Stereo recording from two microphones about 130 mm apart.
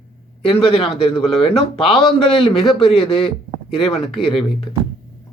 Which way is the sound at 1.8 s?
Centre (ahead or behind).